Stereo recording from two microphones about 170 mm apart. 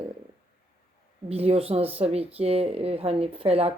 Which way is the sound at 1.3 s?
35° right (ahead or behind).